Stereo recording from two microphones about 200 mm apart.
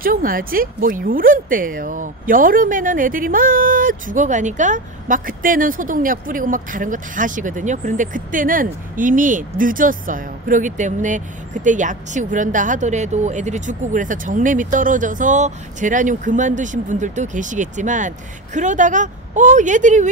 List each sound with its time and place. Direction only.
0.0 s speech: 45° right (ahead or behind)